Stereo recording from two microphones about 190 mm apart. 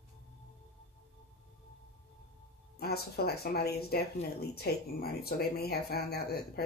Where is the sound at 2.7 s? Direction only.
55° left (ahead or behind).